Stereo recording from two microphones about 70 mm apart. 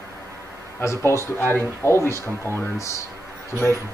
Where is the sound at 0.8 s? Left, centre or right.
Left.